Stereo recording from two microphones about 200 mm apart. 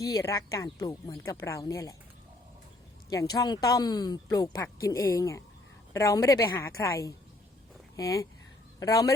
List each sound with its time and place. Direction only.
0.0 s speech: 15° left (ahead or behind)
3.1 s speech: 20° left (ahead or behind)